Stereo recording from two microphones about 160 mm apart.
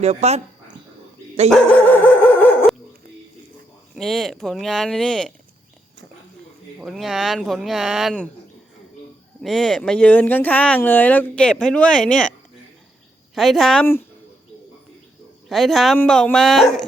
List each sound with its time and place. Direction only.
0.0 s speech: 40° right (ahead or behind)
2.0 s a sound: 10° left (ahead or behind)
3.9 s speech: centre (ahead or behind)
6.7 s speech: centre (ahead or behind)
9.4 s speech: centre (ahead or behind)
13.3 s speech: centre (ahead or behind)
15.4 s speech: centre (ahead or behind)